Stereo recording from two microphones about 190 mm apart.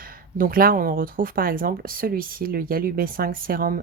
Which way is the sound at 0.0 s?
50° right (ahead or behind).